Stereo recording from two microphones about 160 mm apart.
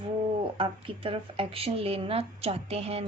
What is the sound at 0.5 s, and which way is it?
Speech, 35° right (ahead or behind).